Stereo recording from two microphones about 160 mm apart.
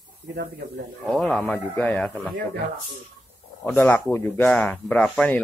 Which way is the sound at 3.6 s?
10° left (ahead or behind).